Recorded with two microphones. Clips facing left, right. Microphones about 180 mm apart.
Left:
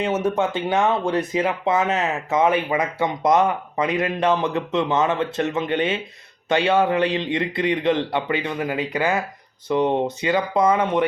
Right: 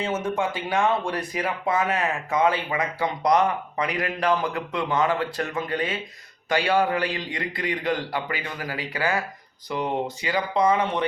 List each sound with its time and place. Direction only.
0.3 s speech: 20° left (ahead or behind)